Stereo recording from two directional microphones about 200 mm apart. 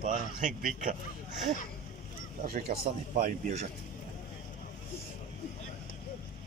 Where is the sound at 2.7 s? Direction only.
45° right (ahead or behind).